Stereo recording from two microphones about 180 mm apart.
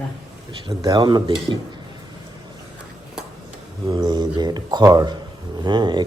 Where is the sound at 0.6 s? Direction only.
25° right (ahead or behind).